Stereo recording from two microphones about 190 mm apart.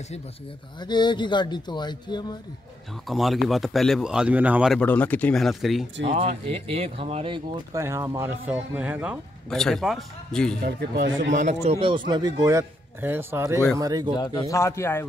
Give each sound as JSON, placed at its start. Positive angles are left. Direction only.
{"t": 0.7, "sound": "speech", "side_deg": 25}
{"t": 3.1, "sound": "speech", "side_deg": 0}
{"t": 6.0, "sound": "speech", "side_deg": -30}
{"t": 7.8, "sound": "speech", "side_deg": -15}
{"t": 9.5, "sound": "speech", "side_deg": 0}
{"t": 10.6, "sound": "speech", "side_deg": -55}
{"t": 11.3, "sound": "speech", "side_deg": -35}
{"t": 14.1, "sound": "speech", "side_deg": 20}